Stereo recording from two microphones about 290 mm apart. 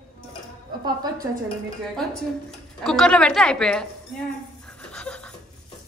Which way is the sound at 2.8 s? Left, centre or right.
Centre.